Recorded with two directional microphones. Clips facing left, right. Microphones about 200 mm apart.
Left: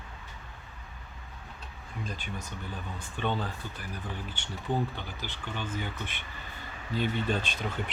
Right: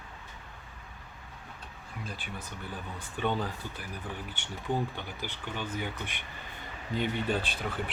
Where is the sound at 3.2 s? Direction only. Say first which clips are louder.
Right 1 dB; 10° right (ahead or behind).